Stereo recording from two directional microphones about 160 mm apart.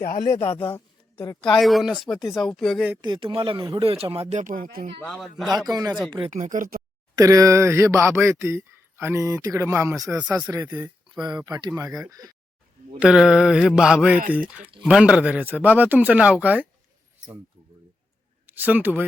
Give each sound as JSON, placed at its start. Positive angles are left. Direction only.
{"t": 0.0, "sound": "speech", "side_deg": 55}
{"t": 0.3, "sound": "speech", "side_deg": 10}
{"t": 1.4, "sound": "mantra", "side_deg": 0}
{"t": 3.0, "sound": "speech", "side_deg": -30}
{"t": 4.4, "sound": "speech", "side_deg": -60}
{"t": 5.0, "sound": "mantra", "side_deg": 0}
{"t": 5.5, "sound": "speech", "side_deg": -25}
{"t": 6.3, "sound": "speech", "side_deg": -55}
{"t": 7.2, "sound": "speech", "side_deg": -20}
{"t": 11.1, "sound": "speech", "side_deg": -25}
{"t": 13.0, "sound": "mantra", "side_deg": -5}
{"t": 14.8, "sound": "speech", "side_deg": -5}
{"t": 18.4, "sound": "speech", "side_deg": -10}